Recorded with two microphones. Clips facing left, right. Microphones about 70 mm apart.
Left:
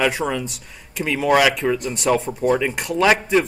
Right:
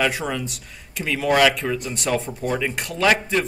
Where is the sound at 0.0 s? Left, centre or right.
Centre.